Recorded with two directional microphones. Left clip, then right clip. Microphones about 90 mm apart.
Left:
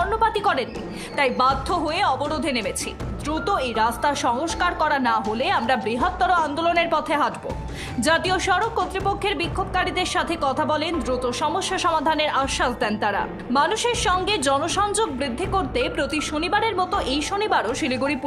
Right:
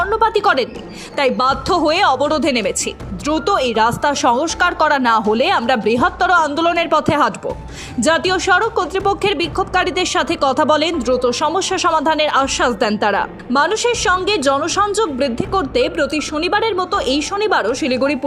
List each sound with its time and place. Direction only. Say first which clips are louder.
0.0 s a sound: right 6 dB; 55° right (ahead or behind)
1.1 s speech: right 4 dB; 70° right (ahead or behind); by 2.7 s 85° right
3.2 s speech: right 7 dB; 65° right (ahead or behind); by 5.2 s 85° right
5.4 s a woman's voice: right 6 dB; 70° right (ahead or behind)
8.0 s a woman's voice: right 5 dB; 55° right (ahead or behind); by 10.9 s 90° right
11.0 s a woman's voice: right 8 dB; 50° right (ahead or behind); by 13.7 s 70° right (ahead or behind)
13.7 s a woman's voice: right 6 dB; 45° right (ahead or behind)
15.2 s a woman's voice: right 6 dB; 55° right (ahead or behind)
16.0 s a woman's voice: right 6 dB; 35° right (ahead or behind)
16.4 s a woman's voice: right 5 dB; 55° right (ahead or behind)